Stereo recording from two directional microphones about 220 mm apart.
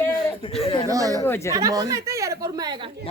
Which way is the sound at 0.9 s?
15° right (ahead or behind).